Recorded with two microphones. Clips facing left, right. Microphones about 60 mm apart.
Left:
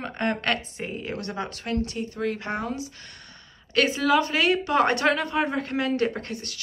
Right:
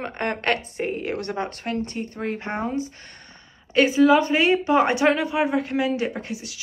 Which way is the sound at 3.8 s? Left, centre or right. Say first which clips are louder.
Right 5 dB; centre.